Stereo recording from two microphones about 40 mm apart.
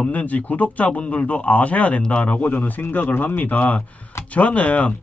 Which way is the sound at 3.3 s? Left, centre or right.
Left.